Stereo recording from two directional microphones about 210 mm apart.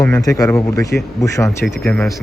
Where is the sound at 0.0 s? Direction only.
15° left (ahead or behind).